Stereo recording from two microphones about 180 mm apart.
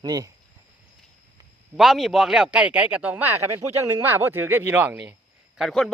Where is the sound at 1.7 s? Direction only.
Centre (ahead or behind).